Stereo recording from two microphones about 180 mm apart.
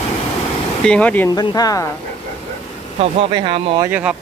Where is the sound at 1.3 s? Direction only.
20° left (ahead or behind).